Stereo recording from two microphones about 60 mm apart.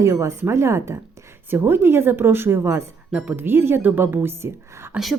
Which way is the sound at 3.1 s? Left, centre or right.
Right.